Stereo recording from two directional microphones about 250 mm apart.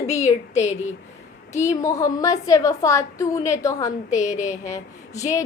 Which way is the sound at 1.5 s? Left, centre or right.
Centre.